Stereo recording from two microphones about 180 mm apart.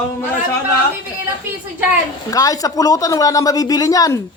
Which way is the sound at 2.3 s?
20° left (ahead or behind).